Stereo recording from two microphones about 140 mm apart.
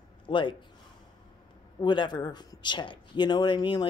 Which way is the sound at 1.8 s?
30° left (ahead or behind).